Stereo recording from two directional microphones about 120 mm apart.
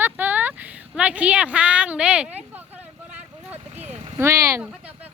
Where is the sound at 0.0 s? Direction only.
15° right (ahead or behind).